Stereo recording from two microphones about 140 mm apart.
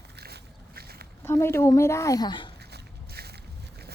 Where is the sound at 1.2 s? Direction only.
20° left (ahead or behind).